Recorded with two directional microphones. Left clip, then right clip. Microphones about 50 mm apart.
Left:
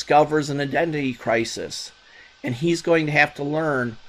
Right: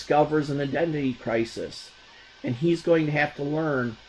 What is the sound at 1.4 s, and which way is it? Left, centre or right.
Speech, left.